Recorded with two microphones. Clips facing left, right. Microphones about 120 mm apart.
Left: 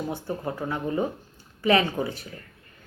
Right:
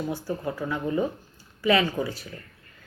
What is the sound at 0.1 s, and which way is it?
Speech, 20° left (ahead or behind).